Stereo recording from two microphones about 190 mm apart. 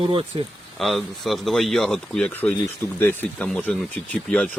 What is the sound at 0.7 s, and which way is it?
Speech, centre (ahead or behind).